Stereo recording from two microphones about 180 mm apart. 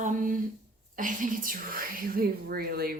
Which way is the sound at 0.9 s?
50° right (ahead or behind).